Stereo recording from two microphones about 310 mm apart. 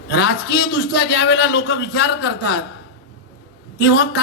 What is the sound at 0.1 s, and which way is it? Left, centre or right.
A man's voice, left.